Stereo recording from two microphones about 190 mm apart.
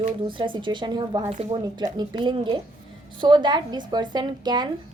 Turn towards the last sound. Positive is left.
turn(degrees=-20)  # may be behind; listen again after turning